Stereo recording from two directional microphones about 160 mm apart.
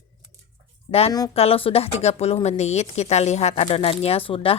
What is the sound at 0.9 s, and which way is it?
Speech, 40° left (ahead or behind).